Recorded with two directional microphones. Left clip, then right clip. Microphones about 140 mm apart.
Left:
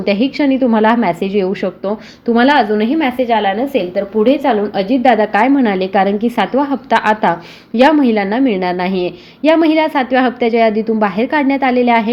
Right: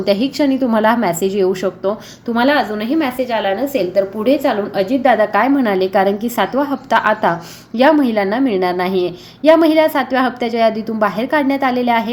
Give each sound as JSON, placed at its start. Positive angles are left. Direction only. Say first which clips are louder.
{"t": 0.0, "sound": "a woman's voice", "louder": "left 1 dB", "side_deg": 25}
{"t": 2.3, "sound": "a woman's voice", "louder": "left 4 dB", "side_deg": 55}